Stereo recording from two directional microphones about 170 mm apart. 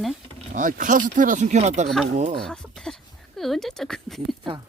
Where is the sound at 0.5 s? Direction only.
50° right (ahead or behind).